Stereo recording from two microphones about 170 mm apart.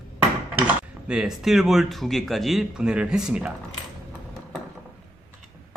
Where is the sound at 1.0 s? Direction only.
5° right (ahead or behind).